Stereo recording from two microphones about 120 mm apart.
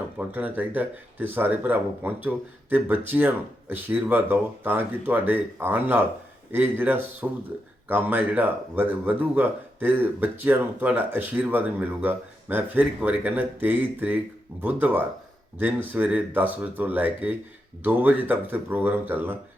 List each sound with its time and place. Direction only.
0.2 s speech: 15° right (ahead or behind)